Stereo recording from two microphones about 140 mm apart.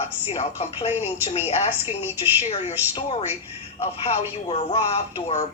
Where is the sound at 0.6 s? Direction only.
45° left (ahead or behind).